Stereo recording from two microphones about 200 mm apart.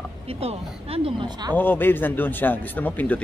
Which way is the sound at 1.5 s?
10° left (ahead or behind).